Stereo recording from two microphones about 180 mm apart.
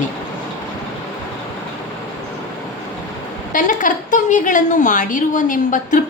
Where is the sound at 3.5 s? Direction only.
45° left (ahead or behind).